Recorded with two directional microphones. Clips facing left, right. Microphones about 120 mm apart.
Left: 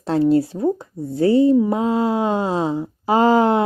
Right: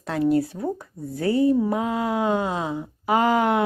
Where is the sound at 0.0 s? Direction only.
30° left (ahead or behind).